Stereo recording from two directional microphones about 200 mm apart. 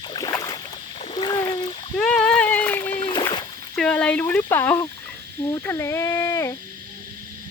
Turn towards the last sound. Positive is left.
turn(degrees=15)  # may be behind; listen again after turning